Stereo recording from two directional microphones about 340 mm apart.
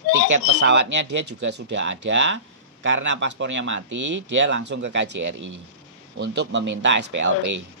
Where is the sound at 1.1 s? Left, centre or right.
Right.